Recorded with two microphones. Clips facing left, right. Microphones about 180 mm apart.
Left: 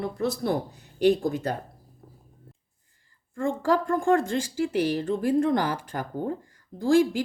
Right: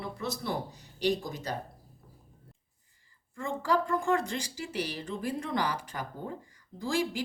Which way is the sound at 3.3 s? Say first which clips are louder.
Left 5 dB; 50° left (ahead or behind).